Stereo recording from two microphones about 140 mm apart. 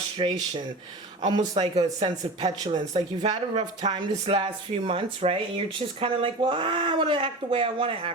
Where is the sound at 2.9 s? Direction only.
50° right (ahead or behind).